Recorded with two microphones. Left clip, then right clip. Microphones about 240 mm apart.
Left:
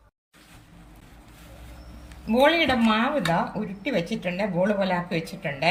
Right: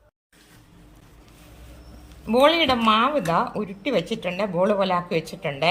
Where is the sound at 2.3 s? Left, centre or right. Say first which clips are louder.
Right 2 dB; centre.